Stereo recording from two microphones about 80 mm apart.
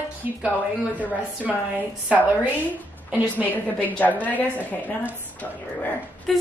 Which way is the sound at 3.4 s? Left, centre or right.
Left.